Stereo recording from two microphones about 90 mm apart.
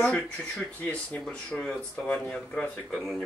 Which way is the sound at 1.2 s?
10° left (ahead or behind).